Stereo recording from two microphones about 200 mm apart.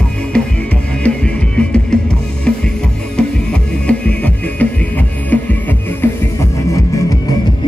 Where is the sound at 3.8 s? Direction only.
5° left (ahead or behind).